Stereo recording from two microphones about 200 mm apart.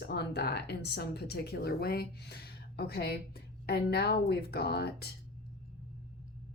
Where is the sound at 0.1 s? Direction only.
55° left (ahead or behind).